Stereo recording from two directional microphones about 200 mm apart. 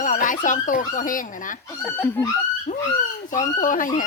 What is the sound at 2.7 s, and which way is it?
Speech, 40° left (ahead or behind).